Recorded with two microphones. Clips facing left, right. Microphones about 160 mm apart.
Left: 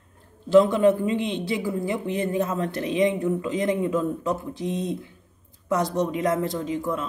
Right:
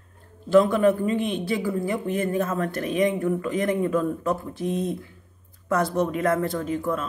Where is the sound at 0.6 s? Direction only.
20° left (ahead or behind).